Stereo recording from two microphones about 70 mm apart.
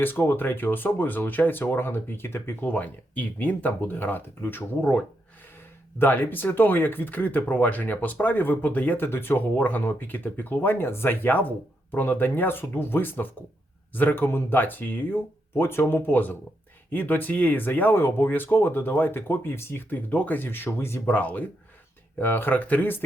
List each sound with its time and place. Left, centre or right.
0.0 s speech: left
2.6 s speech: left
4.8 s speech: centre
6.0 s speech: left
21.2 s speech: left